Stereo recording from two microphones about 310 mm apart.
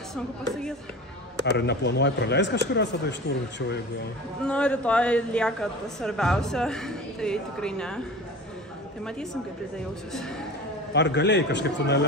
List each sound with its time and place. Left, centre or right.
1.4 s speech: left
4.5 s speech: centre
10.9 s speech: left